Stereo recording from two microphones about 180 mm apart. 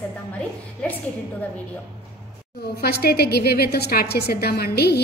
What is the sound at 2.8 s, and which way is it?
A woman's voice, 60° left (ahead or behind).